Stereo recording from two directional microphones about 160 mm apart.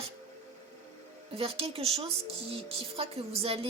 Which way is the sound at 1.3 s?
35° right (ahead or behind).